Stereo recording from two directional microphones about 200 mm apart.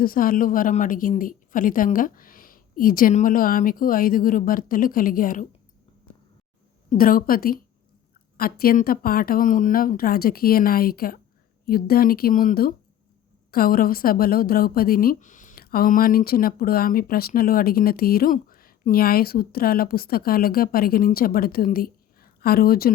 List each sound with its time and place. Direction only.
0.0 s a woman's voice: 45° left (ahead or behind)
6.9 s a woman's voice: 45° left (ahead or behind)